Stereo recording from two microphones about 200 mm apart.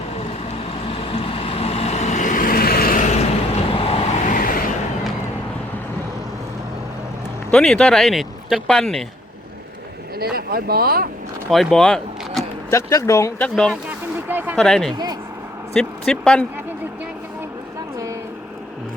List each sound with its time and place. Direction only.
0.2 s vehicle: 30° left (ahead or behind)
7.5 s speech: 5° left (ahead or behind)
10.2 s speech: 50° right (ahead or behind)
11.5 s speech: centre (ahead or behind)
12.7 s speech: 15° left (ahead or behind)
14.3 s speech: 10° right (ahead or behind)
14.5 s speech: centre (ahead or behind)
14.9 s speech: 20° right (ahead or behind)
15.7 s speech: 5° left (ahead or behind)